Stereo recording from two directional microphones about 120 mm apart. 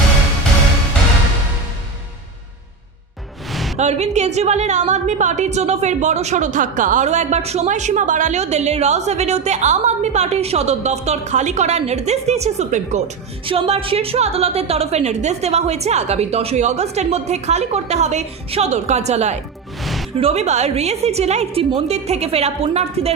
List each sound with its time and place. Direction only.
3.5 s music: centre (ahead or behind)
3.8 s a woman's voice: 65° right (ahead or behind)
13.4 s a woman's voice: 50° right (ahead or behind); by 19.4 s 70° right (ahead or behind)
19.8 s music: centre (ahead or behind)
20.1 s a woman's voice: 60° right (ahead or behind)